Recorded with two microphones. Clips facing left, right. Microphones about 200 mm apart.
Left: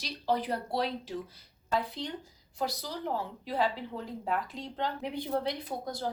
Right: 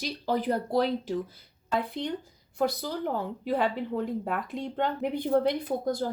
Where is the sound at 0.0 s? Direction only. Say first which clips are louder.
Right 3 dB; 50° right (ahead or behind).